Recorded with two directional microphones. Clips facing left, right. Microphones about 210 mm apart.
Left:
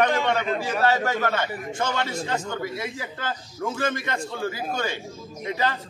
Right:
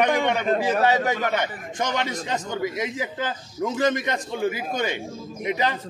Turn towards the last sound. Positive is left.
turn(degrees=-15)  # may be behind; listen again after turning